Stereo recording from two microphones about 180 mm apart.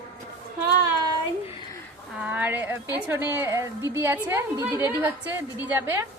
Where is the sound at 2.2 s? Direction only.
10° right (ahead or behind).